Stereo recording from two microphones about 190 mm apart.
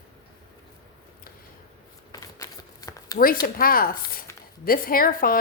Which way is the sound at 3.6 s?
50° left (ahead or behind).